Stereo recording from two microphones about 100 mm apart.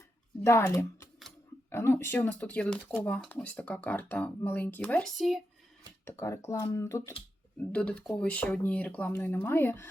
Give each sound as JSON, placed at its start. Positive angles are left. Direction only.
{"t": 0.4, "sound": "speech", "side_deg": 30}
{"t": 5.0, "sound": "speech", "side_deg": 0}
{"t": 6.1, "sound": "speech", "side_deg": 30}
{"t": 7.6, "sound": "speech", "side_deg": 10}